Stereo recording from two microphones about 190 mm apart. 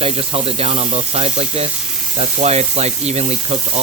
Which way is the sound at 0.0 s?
30° right (ahead or behind).